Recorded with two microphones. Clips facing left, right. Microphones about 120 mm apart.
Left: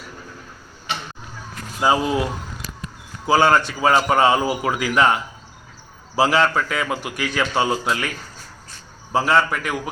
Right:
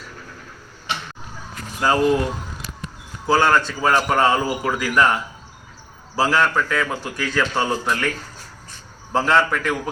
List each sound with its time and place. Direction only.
1.8 s a man's voice: 15° left (ahead or behind)
3.2 s a man's voice: 15° left (ahead or behind)
9.1 s a man's voice: 10° left (ahead or behind)